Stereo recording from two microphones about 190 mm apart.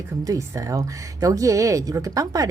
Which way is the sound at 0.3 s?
15° right (ahead or behind).